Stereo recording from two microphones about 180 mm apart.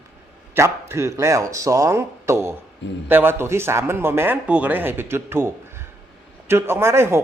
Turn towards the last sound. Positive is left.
turn(degrees=-15)  # may be behind; listen again after turning